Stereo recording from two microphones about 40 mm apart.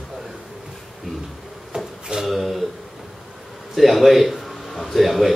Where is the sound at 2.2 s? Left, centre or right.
Centre.